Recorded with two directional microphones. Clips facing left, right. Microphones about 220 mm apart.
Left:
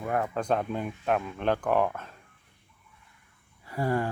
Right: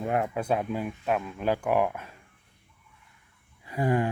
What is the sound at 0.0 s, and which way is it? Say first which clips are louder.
Speech: right 2 dB; 20° right (ahead or behind).